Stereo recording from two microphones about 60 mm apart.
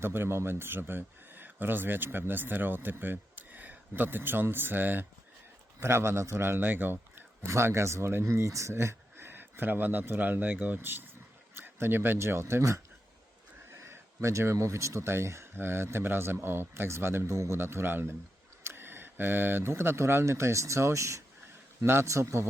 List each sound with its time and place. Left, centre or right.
0.0 s speech: right
5.8 s a man's voice: right
8.7 s speech: right
15.5 s a man's voice: right